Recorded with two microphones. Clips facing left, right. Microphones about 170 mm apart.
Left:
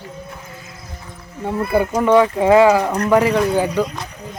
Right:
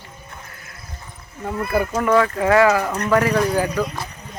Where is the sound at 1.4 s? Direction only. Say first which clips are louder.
Left 4 dB; 25° left (ahead or behind).